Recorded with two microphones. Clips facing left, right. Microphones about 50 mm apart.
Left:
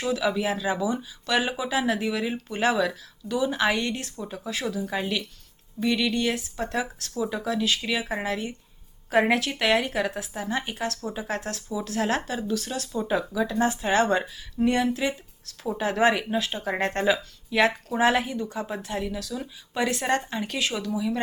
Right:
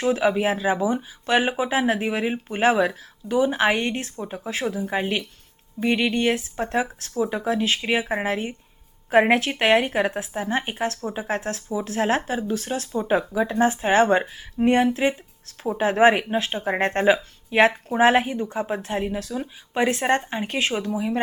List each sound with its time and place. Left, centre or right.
0.0 s a woman's voice: right